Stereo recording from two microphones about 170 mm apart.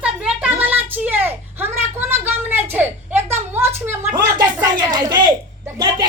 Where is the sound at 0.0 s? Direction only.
10° right (ahead or behind).